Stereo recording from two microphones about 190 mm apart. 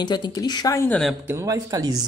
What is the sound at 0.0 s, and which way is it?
Speech, 20° left (ahead or behind).